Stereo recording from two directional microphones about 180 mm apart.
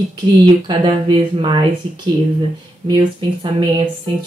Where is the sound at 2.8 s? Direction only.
25° right (ahead or behind).